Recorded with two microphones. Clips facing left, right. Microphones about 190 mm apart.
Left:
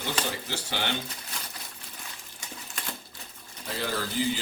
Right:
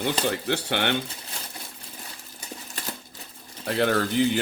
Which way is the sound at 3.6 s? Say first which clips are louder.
Right 9 dB; 65° right (ahead or behind).